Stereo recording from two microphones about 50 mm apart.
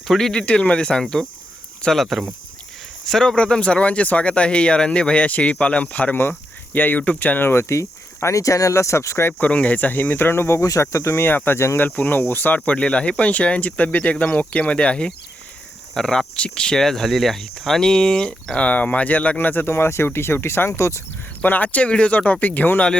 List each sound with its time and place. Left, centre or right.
0.1 s speech: centre
0.4 s speech: left
3.1 s speech: centre
3.3 s speech: left
7.5 s speech: left
9.4 s speech: left
10.5 s speech: left
11.5 s speech: left
11.9 s speech: left
12.5 s speech: left
19.4 s speech: left
19.7 s speech: left
21.4 s speech: left